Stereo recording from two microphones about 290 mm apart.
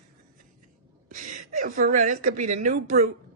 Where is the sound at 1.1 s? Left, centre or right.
Right.